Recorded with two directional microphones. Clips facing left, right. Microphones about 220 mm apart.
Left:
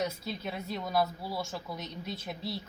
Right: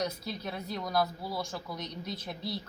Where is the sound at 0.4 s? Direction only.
5° left (ahead or behind).